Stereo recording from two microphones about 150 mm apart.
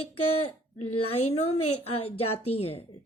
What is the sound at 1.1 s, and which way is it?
A woman's voice, 40° left (ahead or behind).